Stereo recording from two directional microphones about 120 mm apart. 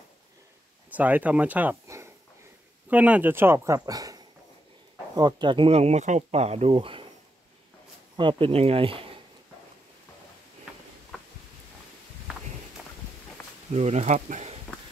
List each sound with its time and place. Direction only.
0.8 s speech: 15° right (ahead or behind)
2.9 s speech: 10° right (ahead or behind); by 5.7 s 40° right (ahead or behind)
5.7 s speech: 65° right (ahead or behind); by 7.1 s 45° right (ahead or behind)
8.2 s speech: 45° right (ahead or behind)
13.7 s speech: 65° right (ahead or behind)